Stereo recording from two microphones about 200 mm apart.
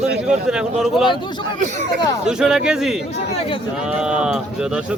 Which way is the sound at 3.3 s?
30° left (ahead or behind).